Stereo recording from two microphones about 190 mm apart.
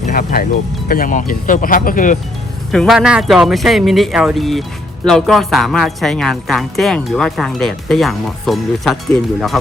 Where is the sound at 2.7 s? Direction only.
Centre (ahead or behind).